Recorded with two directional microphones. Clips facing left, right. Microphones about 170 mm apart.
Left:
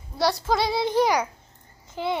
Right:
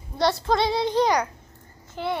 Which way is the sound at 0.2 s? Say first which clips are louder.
Right 1 dB; centre (ahead or behind).